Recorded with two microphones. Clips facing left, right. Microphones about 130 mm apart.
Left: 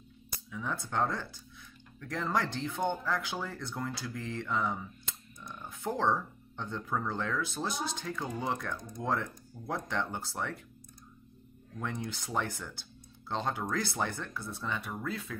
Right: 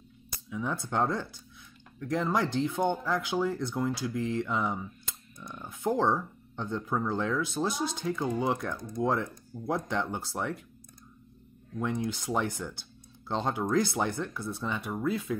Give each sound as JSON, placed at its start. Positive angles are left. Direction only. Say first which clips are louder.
{"t": 0.5, "sound": "speech", "louder": "right 4 dB", "side_deg": -15}
{"t": 5.8, "sound": "speech", "louder": "right 4 dB", "side_deg": -15}
{"t": 11.8, "sound": "speech", "louder": "right 6 dB", "side_deg": -15}